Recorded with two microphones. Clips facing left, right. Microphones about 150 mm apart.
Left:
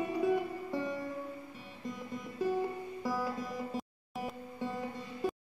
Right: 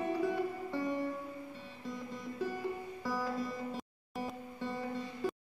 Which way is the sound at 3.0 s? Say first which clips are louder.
Even; 15° left (ahead or behind).